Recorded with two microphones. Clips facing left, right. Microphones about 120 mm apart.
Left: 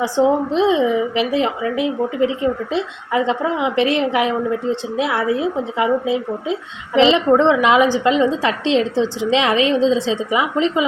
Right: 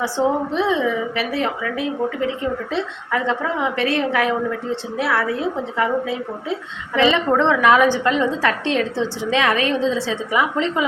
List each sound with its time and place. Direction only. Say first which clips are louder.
0.0 s a woman's voice: left 4 dB; 20° left (ahead or behind)